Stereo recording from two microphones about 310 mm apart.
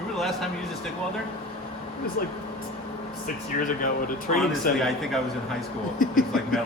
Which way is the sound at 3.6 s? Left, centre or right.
Left.